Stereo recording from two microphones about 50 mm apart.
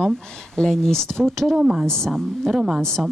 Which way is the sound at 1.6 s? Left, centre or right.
Centre.